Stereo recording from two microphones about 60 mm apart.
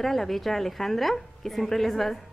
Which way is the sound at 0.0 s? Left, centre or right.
Centre.